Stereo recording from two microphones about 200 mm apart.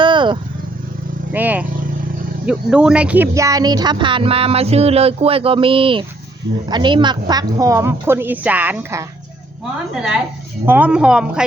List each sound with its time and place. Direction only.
0.0 s vehicle: 25° right (ahead or behind)
1.3 s a woman's voice: 10° right (ahead or behind)